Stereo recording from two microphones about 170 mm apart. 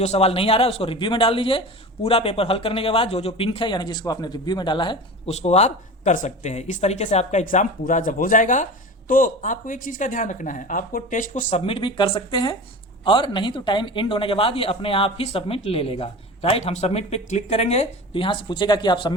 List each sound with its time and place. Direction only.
0.0 s speech: 40° left (ahead or behind)
5.3 s speech: 40° left (ahead or behind)
11.6 s speech: 30° left (ahead or behind)